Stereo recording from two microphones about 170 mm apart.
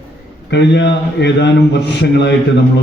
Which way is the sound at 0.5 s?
90° left.